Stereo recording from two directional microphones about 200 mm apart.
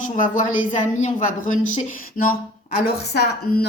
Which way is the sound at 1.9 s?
45° left (ahead or behind).